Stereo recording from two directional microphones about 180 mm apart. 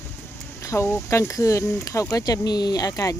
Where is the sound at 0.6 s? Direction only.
15° left (ahead or behind).